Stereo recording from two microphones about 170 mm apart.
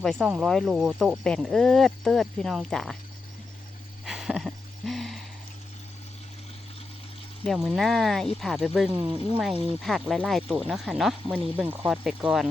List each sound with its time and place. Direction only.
0.0 s speech: centre (ahead or behind)
4.0 s a sound: centre (ahead or behind)
7.4 s speech: centre (ahead or behind)
8.9 s speech: 25° right (ahead or behind)
9.8 s speech: centre (ahead or behind)